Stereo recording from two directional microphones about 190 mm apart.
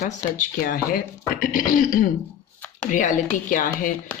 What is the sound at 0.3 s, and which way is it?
Speech, 45° left (ahead or behind).